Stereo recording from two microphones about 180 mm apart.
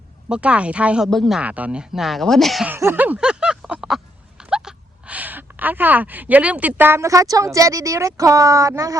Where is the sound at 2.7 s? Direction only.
10° right (ahead or behind).